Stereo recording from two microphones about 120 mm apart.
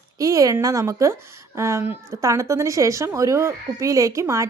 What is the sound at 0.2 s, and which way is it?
A woman's voice, 30° right (ahead or behind).